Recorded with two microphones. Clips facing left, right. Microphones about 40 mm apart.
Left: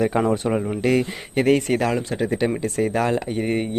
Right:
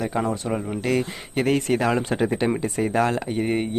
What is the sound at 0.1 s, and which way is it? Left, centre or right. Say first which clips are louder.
Speech: left 1 dB; left.